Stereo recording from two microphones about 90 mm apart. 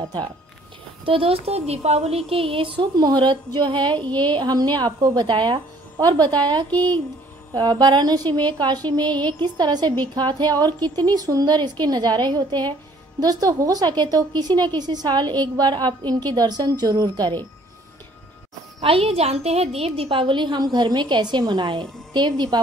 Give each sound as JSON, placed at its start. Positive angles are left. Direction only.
{"t": 1.0, "sound": "a child's voice", "side_deg": -90}
{"t": 3.2, "sound": "a woman's voice", "side_deg": -60}
{"t": 5.9, "sound": "a woman's voice", "side_deg": -50}
{"t": 18.8, "sound": "a child's voice", "side_deg": -90}